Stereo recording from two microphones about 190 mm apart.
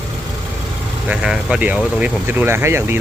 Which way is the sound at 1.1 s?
5° right (ahead or behind).